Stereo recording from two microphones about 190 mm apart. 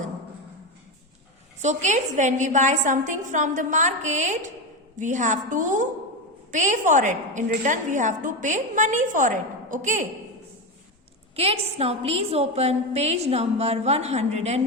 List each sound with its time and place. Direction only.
1.6 s a woman's voice: 40° right (ahead or behind)
11.3 s a woman's voice: 30° right (ahead or behind)